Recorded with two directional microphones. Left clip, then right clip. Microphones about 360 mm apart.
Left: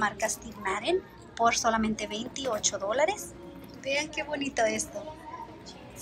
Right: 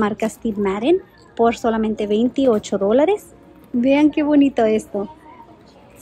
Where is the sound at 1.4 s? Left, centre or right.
Centre.